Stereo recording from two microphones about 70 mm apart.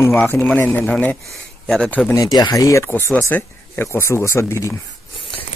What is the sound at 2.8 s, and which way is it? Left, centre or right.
Speech, left.